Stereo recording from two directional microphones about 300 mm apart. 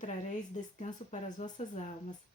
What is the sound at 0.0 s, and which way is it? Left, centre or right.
Speech, left.